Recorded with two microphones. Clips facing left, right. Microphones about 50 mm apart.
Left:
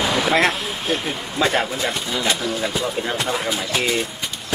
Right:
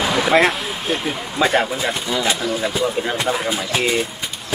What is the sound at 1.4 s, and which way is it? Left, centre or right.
Speech, centre.